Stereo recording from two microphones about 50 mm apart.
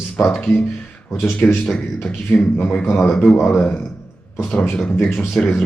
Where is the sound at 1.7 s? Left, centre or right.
Centre.